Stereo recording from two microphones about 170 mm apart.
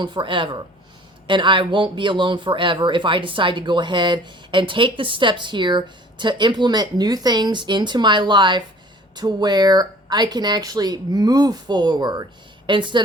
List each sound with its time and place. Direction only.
0.0 s speech: 30° right (ahead or behind)